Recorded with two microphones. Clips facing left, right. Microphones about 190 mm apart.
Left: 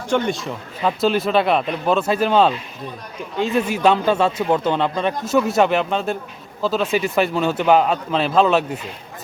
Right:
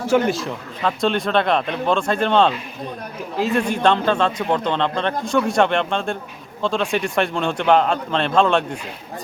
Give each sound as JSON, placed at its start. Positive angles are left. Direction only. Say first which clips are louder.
{"t": 0.1, "sound": "a man's voice", "louder": "right 2 dB", "side_deg": -5}